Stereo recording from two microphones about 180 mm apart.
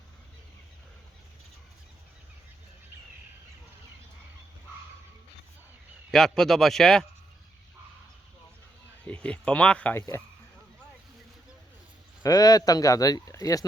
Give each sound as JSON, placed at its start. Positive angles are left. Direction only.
{"t": 6.1, "sound": "speech", "side_deg": 5}
{"t": 9.0, "sound": "speech", "side_deg": 5}
{"t": 12.2, "sound": "speech", "side_deg": 20}